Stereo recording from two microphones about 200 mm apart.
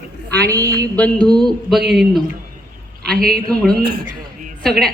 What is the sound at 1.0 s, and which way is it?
A woman's voice, 5° left (ahead or behind).